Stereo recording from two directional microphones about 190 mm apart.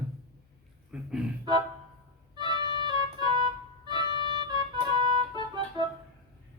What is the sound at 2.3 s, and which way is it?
Music, 25° right (ahead or behind).